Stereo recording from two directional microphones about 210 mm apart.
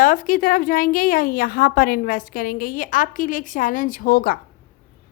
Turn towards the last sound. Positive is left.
turn(degrees=40)  # may be behind; listen again after turning